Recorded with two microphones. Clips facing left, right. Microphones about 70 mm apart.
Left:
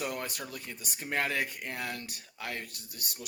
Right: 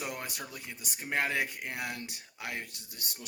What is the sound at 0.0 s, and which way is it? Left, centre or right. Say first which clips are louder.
Speech: left 3 dB; centre.